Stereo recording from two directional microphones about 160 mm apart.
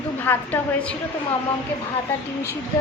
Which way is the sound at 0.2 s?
10° left (ahead or behind).